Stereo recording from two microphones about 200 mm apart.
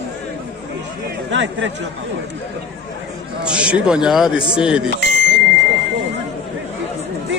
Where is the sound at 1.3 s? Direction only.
65° right (ahead or behind).